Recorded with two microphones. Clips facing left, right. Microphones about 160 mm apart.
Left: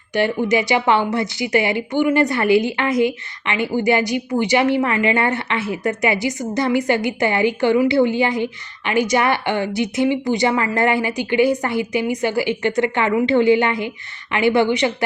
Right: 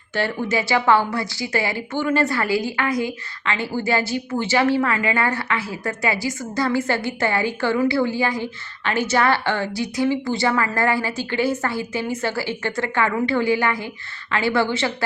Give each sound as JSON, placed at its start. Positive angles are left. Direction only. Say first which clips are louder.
{"t": 0.1, "sound": "a woman's voice", "louder": "left 5 dB", "side_deg": 15}